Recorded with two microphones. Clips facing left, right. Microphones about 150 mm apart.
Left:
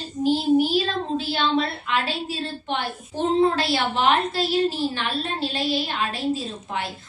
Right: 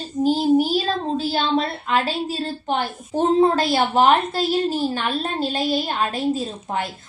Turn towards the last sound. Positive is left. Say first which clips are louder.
# right 4 dB
turn(degrees=-45)  # may be behind; listen again after turning